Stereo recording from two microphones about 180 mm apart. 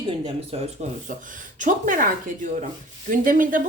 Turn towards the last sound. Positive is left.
turn(degrees=-50)  # may be behind; listen again after turning